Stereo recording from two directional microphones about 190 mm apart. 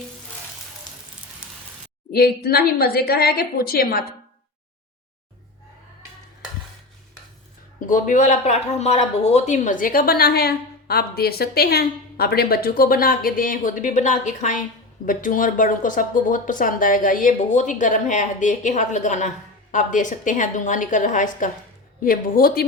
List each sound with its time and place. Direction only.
2.1 s speech: 55° left (ahead or behind)
7.8 s speech: 45° left (ahead or behind)